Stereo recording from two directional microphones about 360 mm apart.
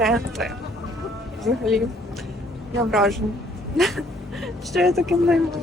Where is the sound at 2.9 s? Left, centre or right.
Centre.